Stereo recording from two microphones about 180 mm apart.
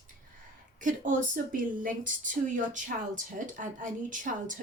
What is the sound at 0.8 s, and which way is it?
A woman's voice, 45° right (ahead or behind).